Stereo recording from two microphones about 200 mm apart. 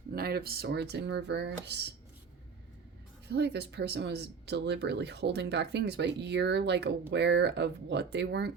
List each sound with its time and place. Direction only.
0.1 s speech: 50° right (ahead or behind)
3.2 s speech: 55° right (ahead or behind)